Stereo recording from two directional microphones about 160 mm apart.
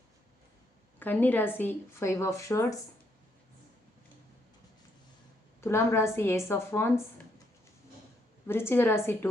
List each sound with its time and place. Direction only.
0.9 s speech: 10° left (ahead or behind)
5.5 s speech: 15° left (ahead or behind)
8.4 s speech: 15° left (ahead or behind)